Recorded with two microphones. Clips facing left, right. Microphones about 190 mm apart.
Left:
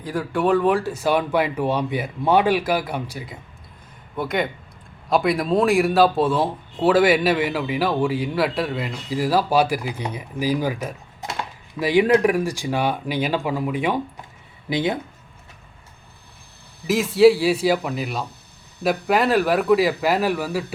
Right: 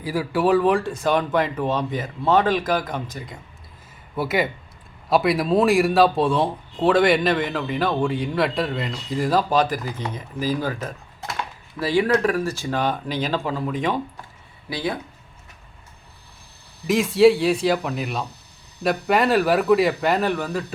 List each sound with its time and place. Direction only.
0.0 s a man's voice: 5° right (ahead or behind)
4.2 s a man's voice: 5° right (ahead or behind); by 14.3 s 10° left (ahead or behind)
14.7 s speech: 20° left (ahead or behind)
16.8 s a man's voice: centre (ahead or behind)